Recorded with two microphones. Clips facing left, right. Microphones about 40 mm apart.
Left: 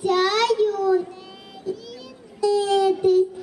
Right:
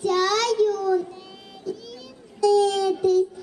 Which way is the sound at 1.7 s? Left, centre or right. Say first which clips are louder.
Left 2 dB; centre.